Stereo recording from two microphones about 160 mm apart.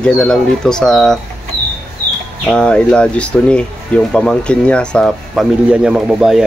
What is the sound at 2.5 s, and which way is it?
Speech, 5° left (ahead or behind).